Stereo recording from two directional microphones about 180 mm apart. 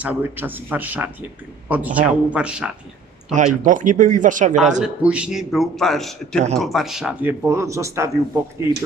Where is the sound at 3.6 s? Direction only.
45° right (ahead or behind).